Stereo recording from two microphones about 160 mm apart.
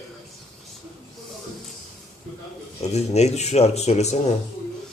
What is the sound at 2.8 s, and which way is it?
Speech, 45° left (ahead or behind).